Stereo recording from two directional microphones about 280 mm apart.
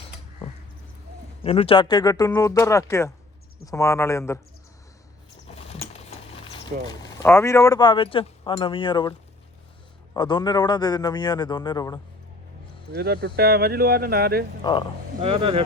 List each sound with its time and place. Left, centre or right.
1.5 s a man's voice: left
5.5 s a sound: left
10.2 s a man's voice: centre
12.9 s speech: right
14.6 s a man's voice: centre
15.2 s speech: centre